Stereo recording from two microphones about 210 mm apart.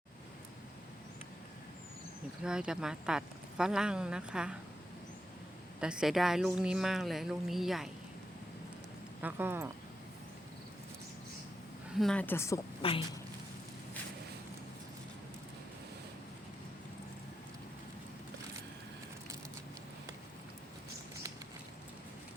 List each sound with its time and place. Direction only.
2.4 s speech: 5° right (ahead or behind)
5.8 s speech: 5° right (ahead or behind)
9.2 s speech: 10° right (ahead or behind)
11.9 s a woman's voice: 5° left (ahead or behind)
12.8 s speech: 25° left (ahead or behind)